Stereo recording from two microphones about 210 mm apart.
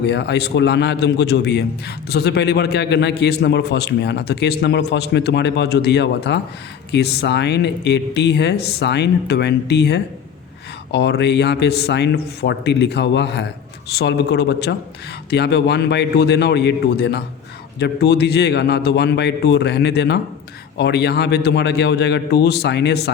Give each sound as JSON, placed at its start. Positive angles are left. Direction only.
{"t": 0.0, "sound": "a man's voice", "side_deg": 55}